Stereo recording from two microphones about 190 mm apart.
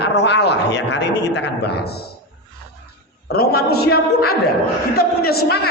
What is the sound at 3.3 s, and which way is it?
A man's voice, 55° left (ahead or behind).